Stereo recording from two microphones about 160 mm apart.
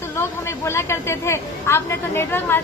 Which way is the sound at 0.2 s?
15° left (ahead or behind).